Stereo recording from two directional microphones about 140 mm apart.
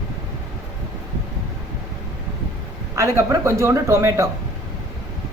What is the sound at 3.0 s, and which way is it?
Speech, 20° right (ahead or behind).